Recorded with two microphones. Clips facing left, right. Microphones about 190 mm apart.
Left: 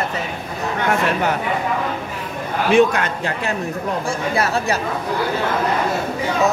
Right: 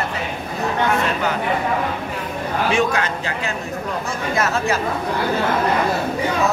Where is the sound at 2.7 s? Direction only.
55° left (ahead or behind).